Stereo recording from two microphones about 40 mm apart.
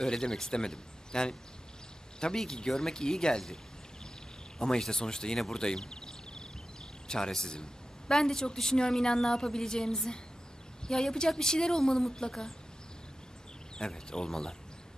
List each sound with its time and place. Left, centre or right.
0.0 s a woman's voice: centre
4.6 s a woman's voice: centre
5.6 s a sound: centre
7.1 s a woman's voice: centre
13.7 s a woman's voice: centre